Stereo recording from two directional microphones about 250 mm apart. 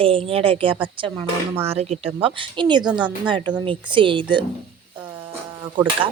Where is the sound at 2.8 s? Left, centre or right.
Centre.